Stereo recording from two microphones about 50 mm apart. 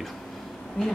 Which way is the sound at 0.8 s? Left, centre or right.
Centre.